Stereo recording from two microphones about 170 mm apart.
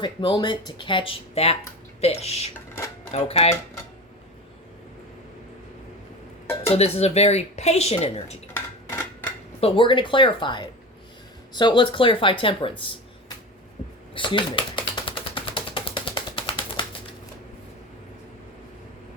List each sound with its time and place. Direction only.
0.0 s speech: 25° left (ahead or behind)
6.7 s speech: 40° left (ahead or behind)
8.5 s a sound: 15° left (ahead or behind)
9.6 s speech: 35° left (ahead or behind)
14.1 s typewriter: 30° left (ahead or behind)